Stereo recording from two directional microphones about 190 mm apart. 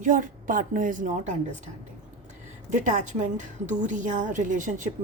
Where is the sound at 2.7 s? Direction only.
40° right (ahead or behind).